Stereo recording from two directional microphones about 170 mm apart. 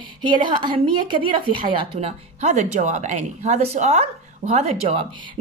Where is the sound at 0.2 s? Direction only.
25° right (ahead or behind).